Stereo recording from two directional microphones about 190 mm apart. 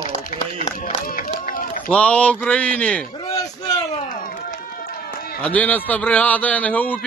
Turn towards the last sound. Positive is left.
turn(degrees=10)  # may be behind; listen again after turning